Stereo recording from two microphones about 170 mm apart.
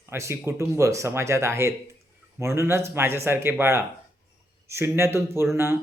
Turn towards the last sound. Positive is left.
turn(degrees=-15)  # may be behind; listen again after turning